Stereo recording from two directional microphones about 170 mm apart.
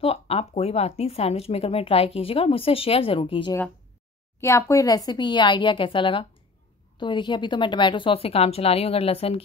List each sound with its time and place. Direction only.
0.0 s speech: 35° left (ahead or behind)
4.4 s speech: 15° left (ahead or behind); by 9.4 s 35° left (ahead or behind)